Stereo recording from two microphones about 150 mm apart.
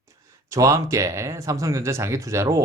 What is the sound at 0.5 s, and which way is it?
Speech, 20° right (ahead or behind).